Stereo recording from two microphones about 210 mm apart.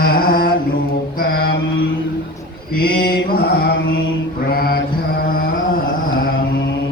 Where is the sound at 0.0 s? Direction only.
45° left (ahead or behind).